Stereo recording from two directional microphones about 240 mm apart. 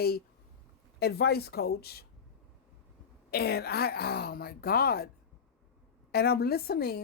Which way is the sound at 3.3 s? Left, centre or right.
Left.